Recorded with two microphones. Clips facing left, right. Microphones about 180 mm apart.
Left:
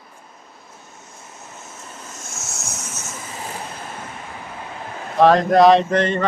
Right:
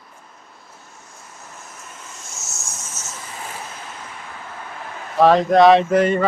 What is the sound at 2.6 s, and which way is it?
Vehicle, 70° left (ahead or behind).